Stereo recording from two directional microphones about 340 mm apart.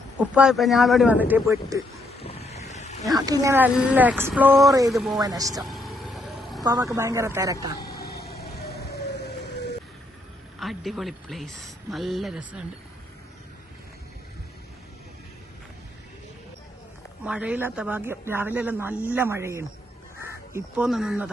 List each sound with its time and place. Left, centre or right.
0.2 s speech: centre
2.0 s wild animals: centre
3.2 s speech: centre
5.2 s music: centre
6.6 s a woman's voice: centre
7.8 s vehicle: left
10.6 s speech: centre
17.2 s speech: centre